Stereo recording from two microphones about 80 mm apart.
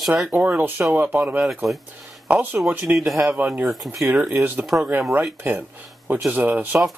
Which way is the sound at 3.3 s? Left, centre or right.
Right.